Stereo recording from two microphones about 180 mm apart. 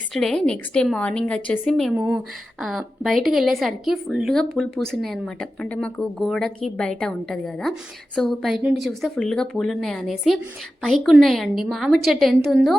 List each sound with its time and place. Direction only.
0.1 s a woman's voice: centre (ahead or behind)
2.0 s speech: 15° right (ahead or behind)
2.6 s a woman's voice: centre (ahead or behind)